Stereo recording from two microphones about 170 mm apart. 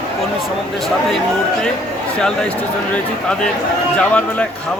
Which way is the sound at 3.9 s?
5° left (ahead or behind).